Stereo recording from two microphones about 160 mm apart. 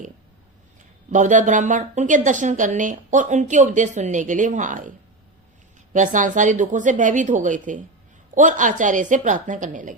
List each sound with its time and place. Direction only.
1.1 s a woman's voice: 50° right (ahead or behind)